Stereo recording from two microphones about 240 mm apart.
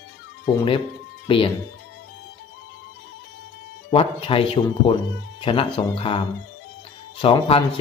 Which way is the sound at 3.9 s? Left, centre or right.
Left.